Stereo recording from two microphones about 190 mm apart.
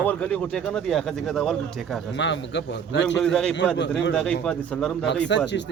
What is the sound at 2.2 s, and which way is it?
Speech, 70° left (ahead or behind).